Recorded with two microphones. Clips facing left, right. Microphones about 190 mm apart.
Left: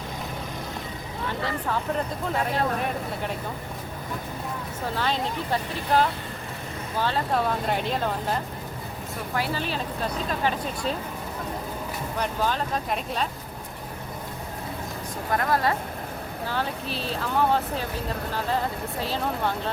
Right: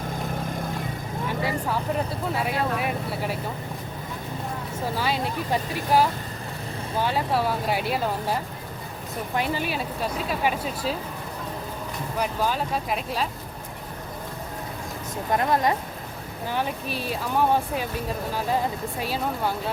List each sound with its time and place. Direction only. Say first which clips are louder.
1.3 s speech: right 1 dB; 10° right (ahead or behind)
4.9 s speech: even; 10° right (ahead or behind)
12.2 s speech: right 1 dB; 5° right (ahead or behind)
15.3 s a woman's voice: right 2 dB; 20° right (ahead or behind)
18.9 s speech: left 2 dB; 10° right (ahead or behind)